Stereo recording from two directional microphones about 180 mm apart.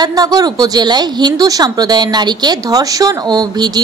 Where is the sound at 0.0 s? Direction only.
20° right (ahead or behind).